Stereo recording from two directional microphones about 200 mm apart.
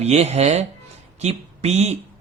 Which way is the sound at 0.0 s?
35° right (ahead or behind).